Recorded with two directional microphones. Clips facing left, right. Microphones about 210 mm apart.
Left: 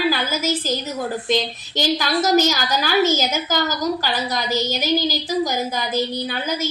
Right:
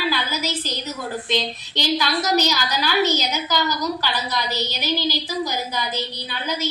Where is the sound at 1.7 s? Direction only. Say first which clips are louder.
Left 2 dB; 45° left (ahead or behind).